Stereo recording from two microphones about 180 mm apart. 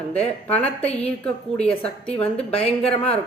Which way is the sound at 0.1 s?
10° left (ahead or behind).